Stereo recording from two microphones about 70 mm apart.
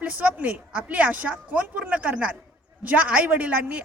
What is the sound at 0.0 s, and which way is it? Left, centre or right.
A man's voice, right.